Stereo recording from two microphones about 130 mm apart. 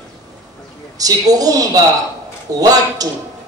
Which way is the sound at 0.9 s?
30° right (ahead or behind).